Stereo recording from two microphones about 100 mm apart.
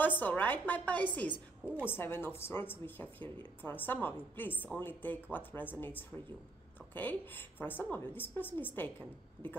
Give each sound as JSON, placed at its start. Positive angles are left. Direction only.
{"t": 0.2, "sound": "speech", "side_deg": 15}